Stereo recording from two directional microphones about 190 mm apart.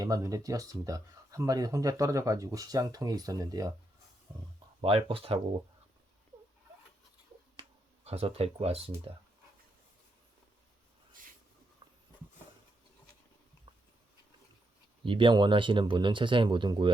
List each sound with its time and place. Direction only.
0.0 s speech: 20° right (ahead or behind)
4.3 s speech: 5° right (ahead or behind)
4.8 s speech: 30° right (ahead or behind)
8.0 s speech: 30° right (ahead or behind)
15.0 s speech: 25° right (ahead or behind)